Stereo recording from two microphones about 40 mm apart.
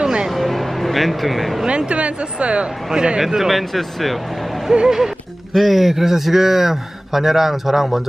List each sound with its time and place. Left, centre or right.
0.0 s music: right
0.3 s vehicle: centre
1.7 s speech: right
2.9 s a man's voice: centre
4.7 s a man's voice: centre
5.5 s a man's voice: centre